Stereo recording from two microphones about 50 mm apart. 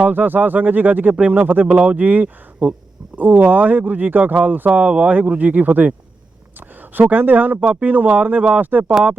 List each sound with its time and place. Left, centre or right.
0.0 s speech: right
1.7 s speech: right
3.2 s speech: right